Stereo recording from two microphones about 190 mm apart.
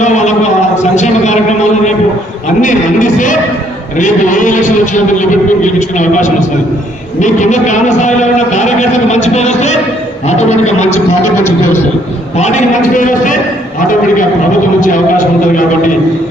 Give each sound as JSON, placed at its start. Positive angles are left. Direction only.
{"t": 0.0, "sound": "a sound", "side_deg": 40}
{"t": 2.6, "sound": "a man's voice", "side_deg": 40}
{"t": 11.3, "sound": "speech", "side_deg": 15}
{"t": 12.4, "sound": "a man's voice", "side_deg": 35}